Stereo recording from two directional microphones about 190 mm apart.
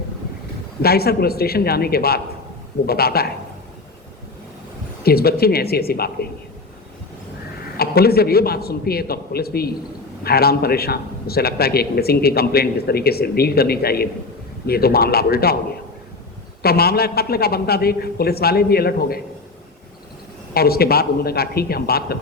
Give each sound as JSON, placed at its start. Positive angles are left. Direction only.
{"t": 0.8, "sound": "a man's voice", "side_deg": 55}
{"t": 5.0, "sound": "a man's voice", "side_deg": 55}
{"t": 7.8, "sound": "a man's voice", "side_deg": 55}
{"t": 16.6, "sound": "a man's voice", "side_deg": 55}
{"t": 20.5, "sound": "a man's voice", "side_deg": 55}